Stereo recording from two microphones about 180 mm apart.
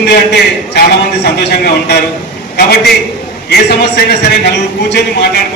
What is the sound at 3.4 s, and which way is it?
A man's voice, 65° left (ahead or behind).